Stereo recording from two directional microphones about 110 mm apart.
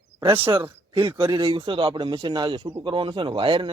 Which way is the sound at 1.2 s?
45° right (ahead or behind).